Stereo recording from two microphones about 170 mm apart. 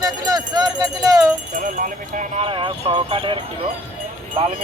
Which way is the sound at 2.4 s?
30° right (ahead or behind).